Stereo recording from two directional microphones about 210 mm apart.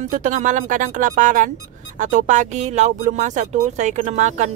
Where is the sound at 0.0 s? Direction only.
35° right (ahead or behind).